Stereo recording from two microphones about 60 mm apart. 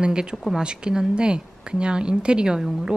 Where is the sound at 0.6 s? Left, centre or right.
Centre.